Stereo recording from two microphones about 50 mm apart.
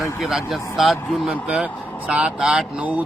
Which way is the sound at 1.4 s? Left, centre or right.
Centre.